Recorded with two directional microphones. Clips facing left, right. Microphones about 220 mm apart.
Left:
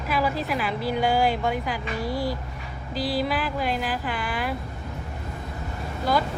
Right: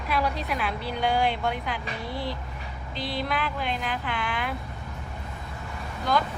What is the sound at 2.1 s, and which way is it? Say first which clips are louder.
Speech: left 4 dB; 45° left (ahead or behind).